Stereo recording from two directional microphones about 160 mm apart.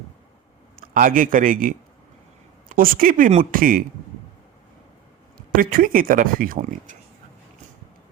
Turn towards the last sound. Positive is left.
turn(degrees=-55)  # may be behind; listen again after turning